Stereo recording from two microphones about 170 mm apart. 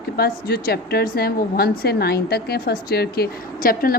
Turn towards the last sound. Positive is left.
turn(degrees=60)  # may be behind; listen again after turning